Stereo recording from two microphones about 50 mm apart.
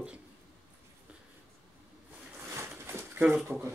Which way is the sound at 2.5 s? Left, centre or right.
Right.